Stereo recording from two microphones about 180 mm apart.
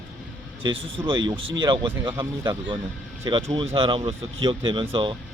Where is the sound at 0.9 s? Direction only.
25° right (ahead or behind).